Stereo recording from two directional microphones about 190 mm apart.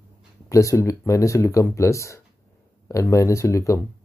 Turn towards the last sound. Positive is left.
turn(degrees=15)  # may be behind; listen again after turning